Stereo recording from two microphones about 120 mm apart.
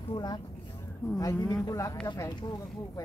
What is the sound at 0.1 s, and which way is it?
A man's voice, 35° left (ahead or behind).